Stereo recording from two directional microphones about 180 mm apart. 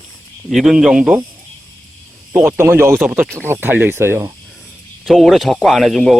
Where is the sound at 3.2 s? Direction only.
5° left (ahead or behind).